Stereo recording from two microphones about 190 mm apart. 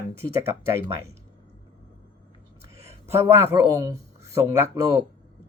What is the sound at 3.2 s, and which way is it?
Speech, 15° right (ahead or behind).